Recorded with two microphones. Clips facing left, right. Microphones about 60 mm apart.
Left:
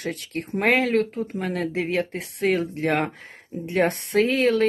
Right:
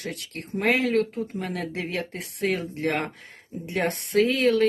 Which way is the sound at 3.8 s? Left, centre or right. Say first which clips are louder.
Left 2 dB; left.